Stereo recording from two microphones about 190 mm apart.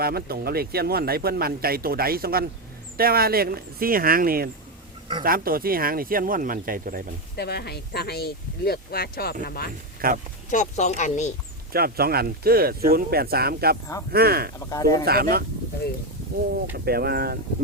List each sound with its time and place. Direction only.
0.0 s speech: 55° right (ahead or behind)
7.3 s speech: 60° left (ahead or behind)
10.0 s speech: 50° right (ahead or behind)
10.5 s speech: 40° left (ahead or behind)
11.7 s speech: 55° right (ahead or behind)
14.6 s speech: 15° left (ahead or behind)
15.0 s speech: 55° right (ahead or behind)
16.7 s speech: 55° right (ahead or behind)